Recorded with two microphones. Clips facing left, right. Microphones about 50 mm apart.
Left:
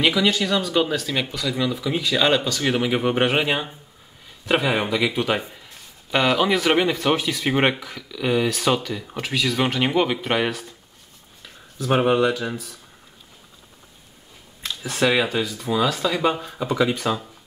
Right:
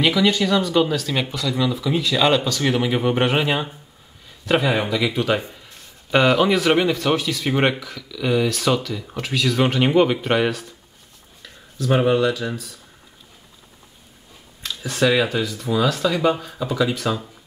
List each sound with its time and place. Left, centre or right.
0.0 s speech: centre
11.4 s speech: centre
14.9 s speech: centre
16.5 s speech: left